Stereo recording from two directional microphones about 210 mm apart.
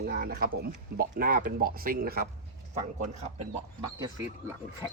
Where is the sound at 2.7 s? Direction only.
35° right (ahead or behind).